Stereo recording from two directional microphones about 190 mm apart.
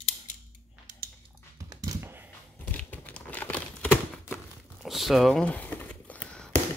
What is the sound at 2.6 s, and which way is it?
Crumpling, 10° left (ahead or behind).